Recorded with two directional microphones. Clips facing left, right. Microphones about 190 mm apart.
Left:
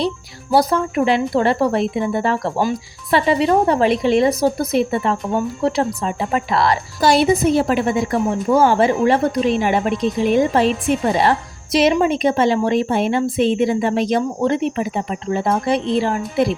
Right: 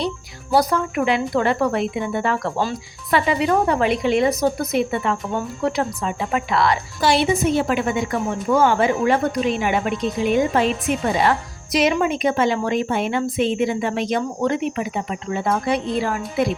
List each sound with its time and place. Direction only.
0.5 s a woman's voice: 30° left (ahead or behind)